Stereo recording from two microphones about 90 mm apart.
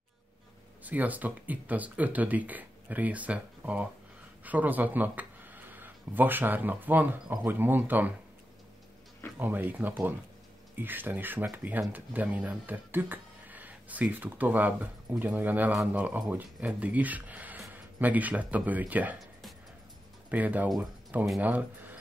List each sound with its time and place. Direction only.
0.8 s speech: 20° right (ahead or behind)
9.4 s speech: 20° right (ahead or behind)
20.2 s speech: 15° right (ahead or behind)